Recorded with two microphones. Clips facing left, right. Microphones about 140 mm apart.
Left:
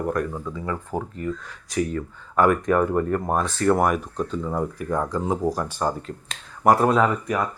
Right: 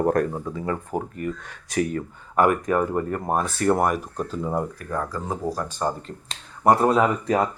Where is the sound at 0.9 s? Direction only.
10° right (ahead or behind).